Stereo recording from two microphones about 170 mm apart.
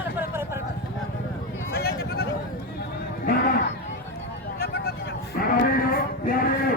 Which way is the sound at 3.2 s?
55° left (ahead or behind).